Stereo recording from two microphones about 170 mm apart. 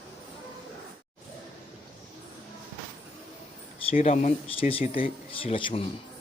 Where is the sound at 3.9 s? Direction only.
40° left (ahead or behind).